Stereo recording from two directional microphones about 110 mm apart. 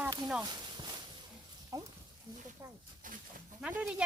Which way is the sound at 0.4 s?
40° right (ahead or behind).